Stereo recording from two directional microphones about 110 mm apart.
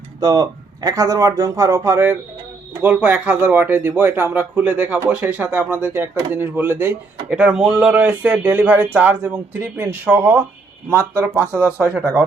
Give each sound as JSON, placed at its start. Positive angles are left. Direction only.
{"t": 0.2, "sound": "speech", "side_deg": -35}
{"t": 11.5, "sound": "speech", "side_deg": -20}